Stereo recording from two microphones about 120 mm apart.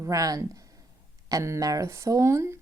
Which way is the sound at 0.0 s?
30° right (ahead or behind).